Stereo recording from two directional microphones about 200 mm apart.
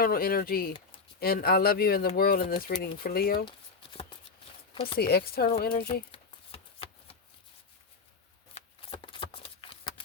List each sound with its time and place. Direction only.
0.0 s speech: 50° left (ahead or behind)
4.7 s speech: 25° left (ahead or behind)
4.9 s speech: 50° left (ahead or behind)
5.9 s shuffling cards: 25° left (ahead or behind)
8.5 s shuffling cards: 25° left (ahead or behind)